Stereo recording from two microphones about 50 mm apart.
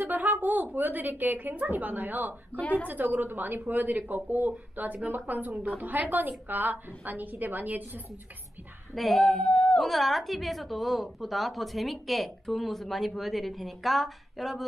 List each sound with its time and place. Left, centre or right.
0.0 s a woman's voice: right
2.6 s a woman's voice: left
2.9 s speech: right
8.9 s a woman's voice: centre